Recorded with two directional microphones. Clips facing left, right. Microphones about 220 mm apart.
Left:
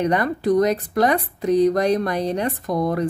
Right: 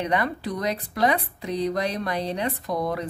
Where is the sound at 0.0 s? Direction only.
45° left (ahead or behind).